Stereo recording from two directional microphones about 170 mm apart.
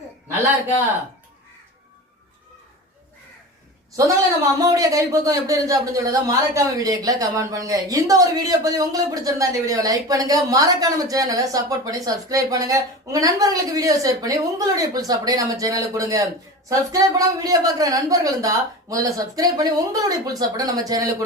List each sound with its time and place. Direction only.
3.9 s a man's voice: 20° right (ahead or behind)